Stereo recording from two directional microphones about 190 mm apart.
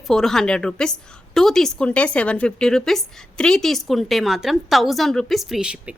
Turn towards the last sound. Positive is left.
turn(degrees=-5)  # may be behind; listen again after turning